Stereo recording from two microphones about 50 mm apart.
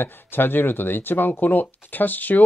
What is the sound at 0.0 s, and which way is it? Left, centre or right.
Speech, left.